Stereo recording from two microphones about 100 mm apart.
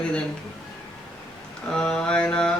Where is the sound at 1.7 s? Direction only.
5° left (ahead or behind).